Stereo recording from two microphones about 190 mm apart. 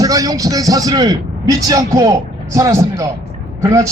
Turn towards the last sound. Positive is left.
turn(degrees=-15)  # may be behind; listen again after turning